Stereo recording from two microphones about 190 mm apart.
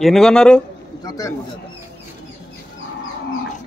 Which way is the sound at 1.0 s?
20° left (ahead or behind).